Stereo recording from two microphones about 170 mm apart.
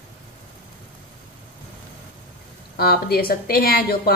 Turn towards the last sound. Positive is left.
turn(degrees=65)  # may be behind; listen again after turning